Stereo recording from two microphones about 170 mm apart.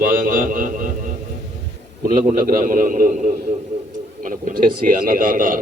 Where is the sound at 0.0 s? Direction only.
55° right (ahead or behind).